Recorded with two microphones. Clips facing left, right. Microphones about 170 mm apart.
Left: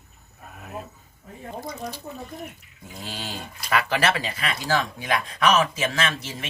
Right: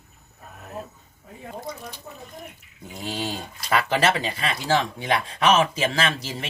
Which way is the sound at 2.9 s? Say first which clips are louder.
Right 5 dB; 20° right (ahead or behind).